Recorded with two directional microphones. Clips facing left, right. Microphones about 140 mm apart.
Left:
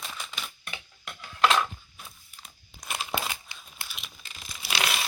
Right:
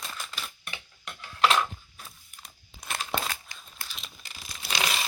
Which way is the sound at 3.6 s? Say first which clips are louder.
Even; 5° left (ahead or behind).